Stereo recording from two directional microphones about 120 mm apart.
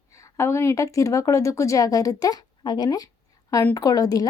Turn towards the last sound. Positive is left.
turn(degrees=30)  # may be behind; listen again after turning